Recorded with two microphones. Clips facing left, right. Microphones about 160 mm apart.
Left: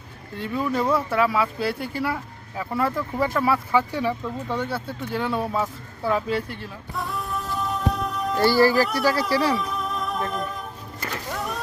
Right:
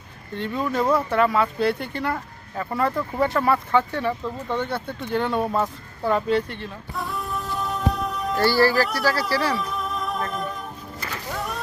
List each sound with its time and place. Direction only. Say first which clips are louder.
0.3 s speech: even; 5° left (ahead or behind)
8.4 s speech: left 1 dB; 20° left (ahead or behind)
8.7 s speech: left 1 dB; centre (ahead or behind)
9.4 s music: left 2 dB; centre (ahead or behind)
11.3 s a sound: right 1 dB; centre (ahead or behind)